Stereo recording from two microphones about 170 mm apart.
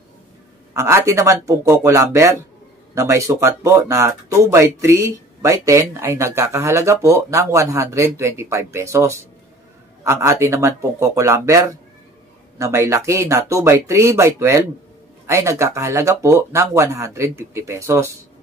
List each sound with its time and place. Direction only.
0.7 s speech: 15° right (ahead or behind)